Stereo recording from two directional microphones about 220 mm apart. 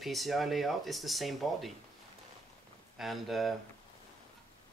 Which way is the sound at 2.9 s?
Centre (ahead or behind).